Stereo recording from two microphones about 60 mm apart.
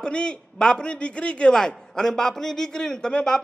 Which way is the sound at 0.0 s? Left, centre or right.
Centre.